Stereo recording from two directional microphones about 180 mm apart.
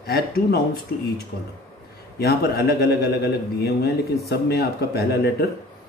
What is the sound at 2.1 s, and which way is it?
Speech, 60° left (ahead or behind).